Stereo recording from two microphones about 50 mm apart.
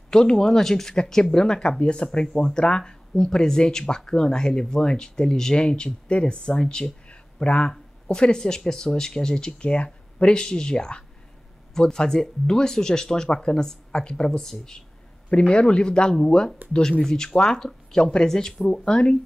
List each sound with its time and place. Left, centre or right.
0.1 s speech: centre
15.2 s a man's voice: left
18.7 s speech: centre